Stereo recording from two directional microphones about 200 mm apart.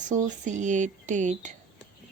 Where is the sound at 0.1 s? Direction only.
40° right (ahead or behind).